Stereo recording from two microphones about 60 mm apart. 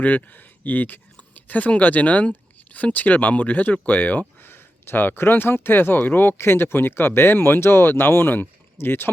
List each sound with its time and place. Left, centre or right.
0.0 s speech: left